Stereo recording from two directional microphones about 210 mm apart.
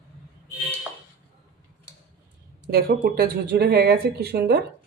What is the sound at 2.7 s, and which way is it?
Speech, 45° right (ahead or behind).